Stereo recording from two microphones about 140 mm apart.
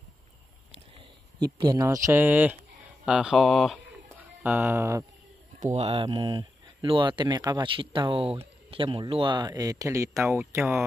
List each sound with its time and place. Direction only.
0.9 s a sound: 30° right (ahead or behind)
2.0 s speech: 15° right (ahead or behind)
4.4 s speech: 10° right (ahead or behind)
5.6 s speech: 55° right (ahead or behind); by 10.4 s 20° right (ahead or behind)